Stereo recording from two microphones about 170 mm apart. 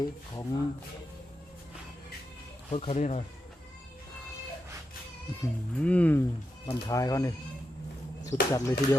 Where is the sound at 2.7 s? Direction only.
40° left (ahead or behind).